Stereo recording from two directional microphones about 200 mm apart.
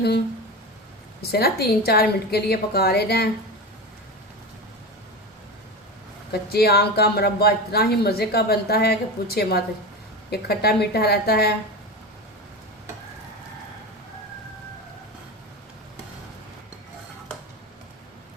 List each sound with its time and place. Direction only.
1.2 s a woman's voice: 50° left (ahead or behind)
6.3 s a woman's voice: 50° left (ahead or behind)